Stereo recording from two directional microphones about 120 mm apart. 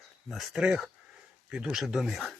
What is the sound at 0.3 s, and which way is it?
Speech, centre (ahead or behind).